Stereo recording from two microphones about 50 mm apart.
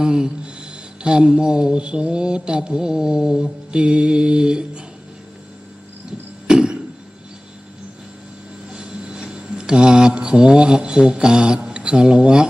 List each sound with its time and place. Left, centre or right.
0.0 s speech: centre
1.0 s mantra: centre
6.5 s a sound: centre
8.7 s vehicle: centre
9.3 s speech: centre